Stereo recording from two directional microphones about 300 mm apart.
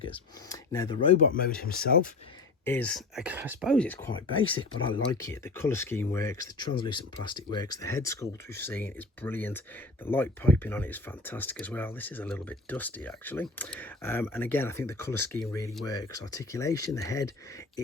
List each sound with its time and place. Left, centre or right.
0.1 s speech: centre
1.5 s speech: left
2.6 s speech: centre